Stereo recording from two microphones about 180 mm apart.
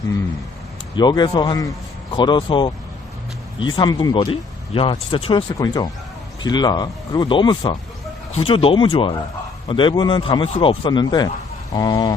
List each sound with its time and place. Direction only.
0.9 s speech: 25° left (ahead or behind)